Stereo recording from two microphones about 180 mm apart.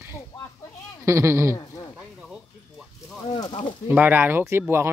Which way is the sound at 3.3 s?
30° left (ahead or behind).